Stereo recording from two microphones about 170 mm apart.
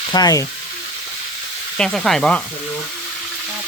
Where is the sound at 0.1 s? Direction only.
20° left (ahead or behind).